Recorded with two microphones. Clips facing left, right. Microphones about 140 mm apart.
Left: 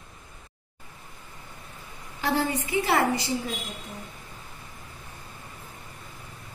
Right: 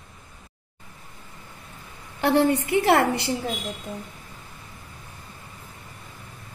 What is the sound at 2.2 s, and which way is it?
A woman's voice, 65° right (ahead or behind).